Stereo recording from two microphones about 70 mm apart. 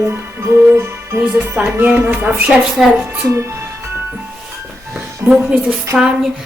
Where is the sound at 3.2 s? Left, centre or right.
Right.